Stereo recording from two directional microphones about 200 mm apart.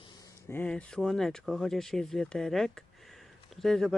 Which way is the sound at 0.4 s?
10° left (ahead or behind).